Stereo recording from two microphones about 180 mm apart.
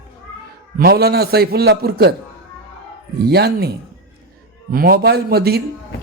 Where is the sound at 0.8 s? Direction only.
60° right (ahead or behind).